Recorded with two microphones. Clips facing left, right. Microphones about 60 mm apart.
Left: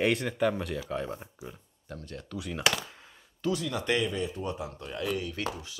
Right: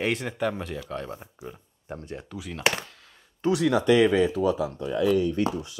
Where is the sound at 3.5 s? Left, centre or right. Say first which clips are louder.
Right 8 dB; right.